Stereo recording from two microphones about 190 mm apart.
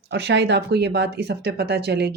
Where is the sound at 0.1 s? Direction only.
65° right (ahead or behind).